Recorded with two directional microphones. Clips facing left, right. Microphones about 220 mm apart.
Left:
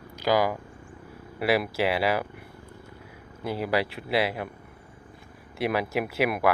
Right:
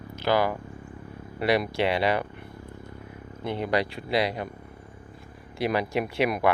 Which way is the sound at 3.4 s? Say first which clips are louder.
Even; 10° left (ahead or behind).